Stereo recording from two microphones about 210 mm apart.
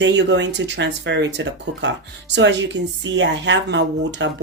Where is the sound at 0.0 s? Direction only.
55° right (ahead or behind).